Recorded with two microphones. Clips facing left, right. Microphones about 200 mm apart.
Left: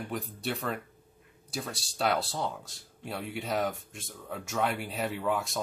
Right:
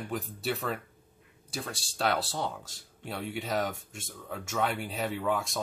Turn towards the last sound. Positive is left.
turn(degrees=0)  # may be behind; listen again after turning